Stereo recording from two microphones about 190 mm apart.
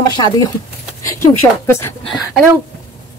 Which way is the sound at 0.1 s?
20° left (ahead or behind).